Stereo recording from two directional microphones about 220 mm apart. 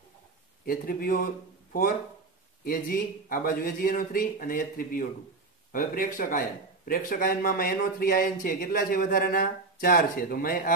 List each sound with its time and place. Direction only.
0.7 s a man's voice: 40° left (ahead or behind)